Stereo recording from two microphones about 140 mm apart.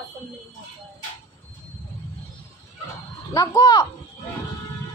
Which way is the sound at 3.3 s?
25° left (ahead or behind).